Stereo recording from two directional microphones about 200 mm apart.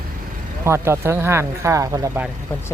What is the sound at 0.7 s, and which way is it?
Speech, 15° right (ahead or behind).